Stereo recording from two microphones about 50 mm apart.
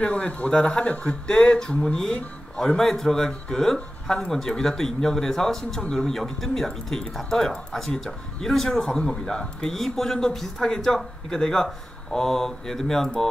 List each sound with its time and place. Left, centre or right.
0.0 s speech: left; by 13.3 s centre